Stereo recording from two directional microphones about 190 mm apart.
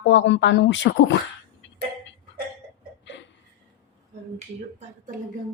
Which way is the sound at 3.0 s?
70° left (ahead or behind).